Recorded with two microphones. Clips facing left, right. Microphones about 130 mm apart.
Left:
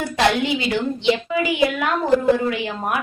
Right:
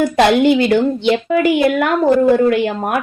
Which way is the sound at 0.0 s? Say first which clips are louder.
Right 8 dB; 55° right (ahead or behind).